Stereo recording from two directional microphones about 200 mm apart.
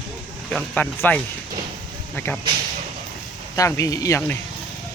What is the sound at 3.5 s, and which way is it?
Speech, 15° left (ahead or behind).